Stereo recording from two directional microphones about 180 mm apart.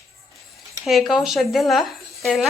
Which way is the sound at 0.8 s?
Centre (ahead or behind).